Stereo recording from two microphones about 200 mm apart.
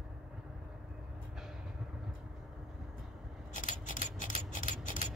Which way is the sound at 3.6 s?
40° left (ahead or behind).